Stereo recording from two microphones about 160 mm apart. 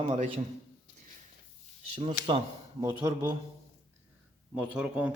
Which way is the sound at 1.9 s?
35° right (ahead or behind).